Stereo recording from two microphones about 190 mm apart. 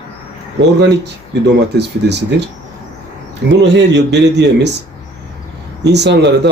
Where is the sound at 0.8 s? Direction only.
65° right (ahead or behind).